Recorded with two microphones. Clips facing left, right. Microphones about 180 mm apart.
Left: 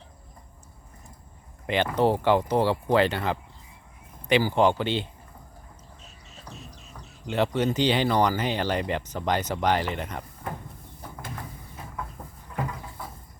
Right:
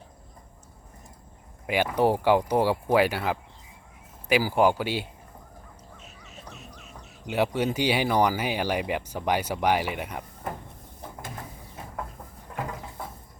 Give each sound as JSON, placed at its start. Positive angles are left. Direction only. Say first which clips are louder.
{"t": 1.6, "sound": "speech", "louder": "even", "side_deg": -10}
{"t": 6.5, "sound": "music", "louder": "left 4 dB", "side_deg": 35}
{"t": 7.3, "sound": "speech", "louder": "left 1 dB", "side_deg": -10}